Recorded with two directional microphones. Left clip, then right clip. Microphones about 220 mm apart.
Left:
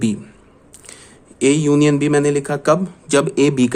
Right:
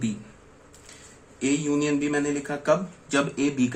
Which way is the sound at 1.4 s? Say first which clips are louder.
Left 11 dB; 50° left (ahead or behind).